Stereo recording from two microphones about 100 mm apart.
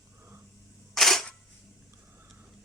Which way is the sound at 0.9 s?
Centre (ahead or behind).